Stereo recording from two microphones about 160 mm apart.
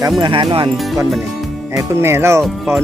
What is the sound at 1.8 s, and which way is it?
Wind chime, 15° right (ahead or behind).